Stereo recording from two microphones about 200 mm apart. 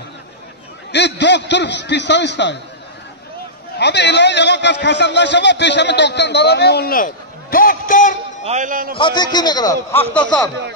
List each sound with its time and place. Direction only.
0.9 s a man's voice: 60° left (ahead or behind)
3.7 s a man's voice: 60° left (ahead or behind)
7.5 s a sound: 45° left (ahead or behind)
8.5 s a man's voice: 40° right (ahead or behind)
8.9 s speech: 25° left (ahead or behind)